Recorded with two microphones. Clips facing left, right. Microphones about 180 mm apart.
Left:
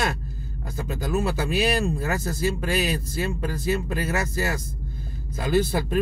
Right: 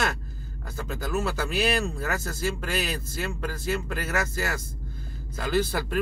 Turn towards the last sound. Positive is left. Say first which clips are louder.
# left 3 dB
turn(degrees=20)  # may be behind; listen again after turning